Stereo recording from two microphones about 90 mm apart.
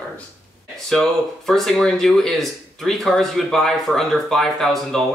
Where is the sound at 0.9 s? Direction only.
5° left (ahead or behind).